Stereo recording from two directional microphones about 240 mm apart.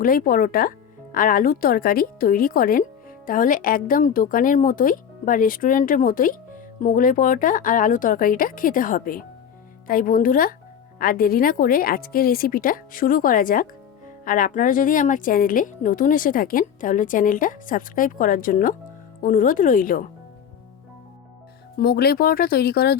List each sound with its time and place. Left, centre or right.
0.0 s a woman's voice: left
21.8 s a woman's voice: left